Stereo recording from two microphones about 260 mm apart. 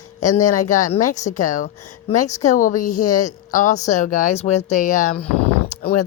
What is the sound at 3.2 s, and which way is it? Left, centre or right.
Speech, left.